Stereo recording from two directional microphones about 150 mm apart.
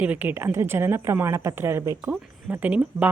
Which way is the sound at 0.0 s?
10° right (ahead or behind).